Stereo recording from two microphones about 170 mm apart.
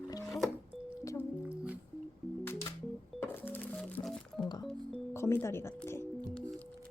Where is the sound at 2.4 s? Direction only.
15° left (ahead or behind).